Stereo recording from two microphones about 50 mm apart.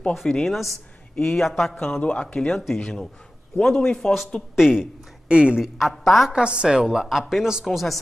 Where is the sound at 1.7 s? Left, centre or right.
Centre.